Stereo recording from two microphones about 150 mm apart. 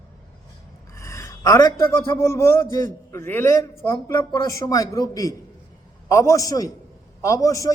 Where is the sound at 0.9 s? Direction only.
20° left (ahead or behind).